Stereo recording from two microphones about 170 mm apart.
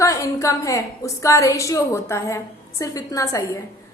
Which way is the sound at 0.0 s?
15° left (ahead or behind).